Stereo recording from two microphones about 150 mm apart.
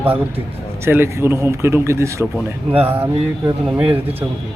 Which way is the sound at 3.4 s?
40° right (ahead or behind).